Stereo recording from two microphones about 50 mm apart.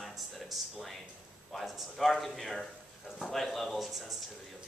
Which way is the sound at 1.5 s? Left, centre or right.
Centre.